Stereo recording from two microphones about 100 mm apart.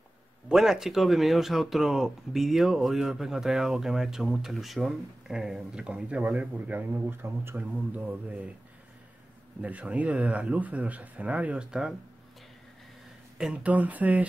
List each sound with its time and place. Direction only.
0.5 s speech: 5° right (ahead or behind)
9.6 s speech: 15° right (ahead or behind)
13.4 s speech: 10° right (ahead or behind)